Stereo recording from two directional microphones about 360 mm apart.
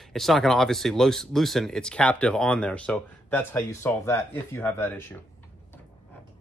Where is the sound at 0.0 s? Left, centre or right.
Centre.